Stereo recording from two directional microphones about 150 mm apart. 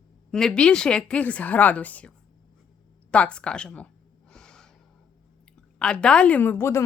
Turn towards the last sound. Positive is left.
turn(degrees=15)  # may be behind; listen again after turning